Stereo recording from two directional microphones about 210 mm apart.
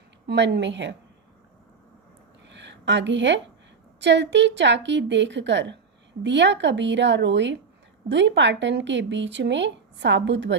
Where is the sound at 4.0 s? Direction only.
55° right (ahead or behind).